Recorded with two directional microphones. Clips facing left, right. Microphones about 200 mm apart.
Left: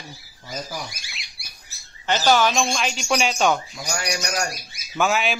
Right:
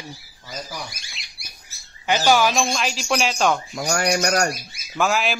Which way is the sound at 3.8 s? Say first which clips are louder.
Right 9 dB; 55° right (ahead or behind).